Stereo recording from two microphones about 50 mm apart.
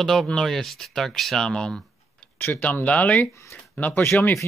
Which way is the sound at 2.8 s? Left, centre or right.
Left.